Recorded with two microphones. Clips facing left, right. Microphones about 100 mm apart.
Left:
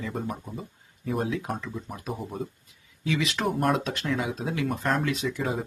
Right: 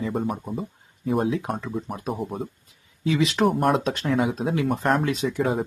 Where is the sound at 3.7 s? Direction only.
30° right (ahead or behind).